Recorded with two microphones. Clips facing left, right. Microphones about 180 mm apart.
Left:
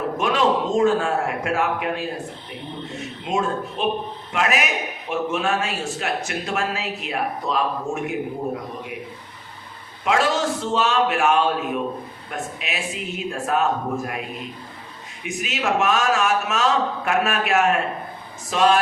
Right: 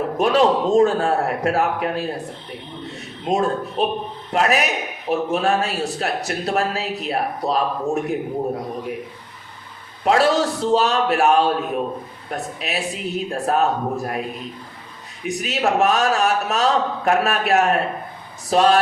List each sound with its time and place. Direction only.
0.2 s a man's voice: 35° right (ahead or behind)
3.2 s a man's voice: 35° right (ahead or behind)
10.0 s a man's voice: 35° right (ahead or behind)
15.2 s a man's voice: 35° right (ahead or behind)